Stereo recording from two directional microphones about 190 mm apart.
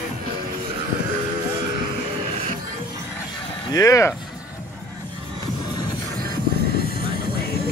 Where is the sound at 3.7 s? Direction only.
15° left (ahead or behind).